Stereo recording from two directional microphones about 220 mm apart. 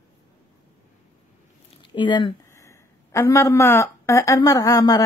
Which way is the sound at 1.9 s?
20° left (ahead or behind).